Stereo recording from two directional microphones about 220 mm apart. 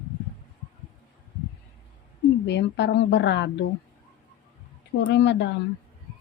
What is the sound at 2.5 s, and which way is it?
A woman's voice, 50° left (ahead or behind).